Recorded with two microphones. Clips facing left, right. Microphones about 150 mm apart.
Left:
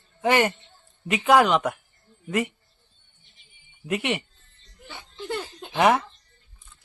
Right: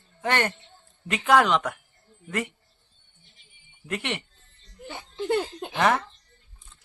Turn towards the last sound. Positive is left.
turn(degrees=10)  # may be behind; listen again after turning